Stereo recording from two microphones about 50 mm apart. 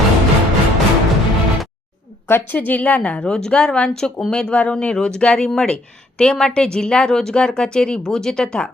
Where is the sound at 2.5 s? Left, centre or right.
Left.